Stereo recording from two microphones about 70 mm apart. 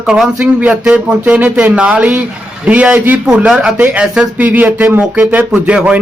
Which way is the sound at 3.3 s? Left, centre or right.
Centre.